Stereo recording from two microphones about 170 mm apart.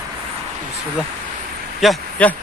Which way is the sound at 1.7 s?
5° left (ahead or behind).